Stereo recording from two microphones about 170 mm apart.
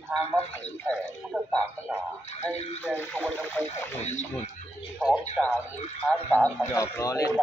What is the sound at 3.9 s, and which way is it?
Speech, 40° left (ahead or behind).